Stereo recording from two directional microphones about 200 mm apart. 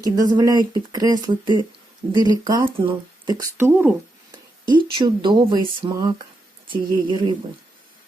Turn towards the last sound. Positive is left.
turn(degrees=-20)  # may be behind; listen again after turning